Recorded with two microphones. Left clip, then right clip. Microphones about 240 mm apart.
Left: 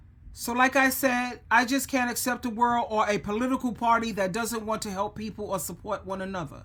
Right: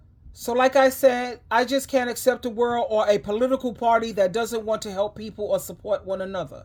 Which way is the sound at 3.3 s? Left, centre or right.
Centre.